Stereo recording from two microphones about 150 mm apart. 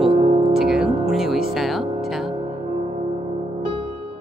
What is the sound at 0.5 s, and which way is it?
Music, 5° right (ahead or behind).